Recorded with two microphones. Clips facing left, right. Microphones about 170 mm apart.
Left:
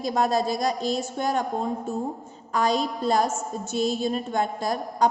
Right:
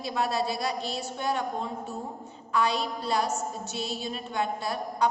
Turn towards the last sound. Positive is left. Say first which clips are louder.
# left 4 dB
turn(degrees=45)  # may be behind; listen again after turning